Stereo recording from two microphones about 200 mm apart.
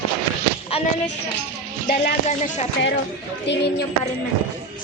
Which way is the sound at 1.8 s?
45° left (ahead or behind).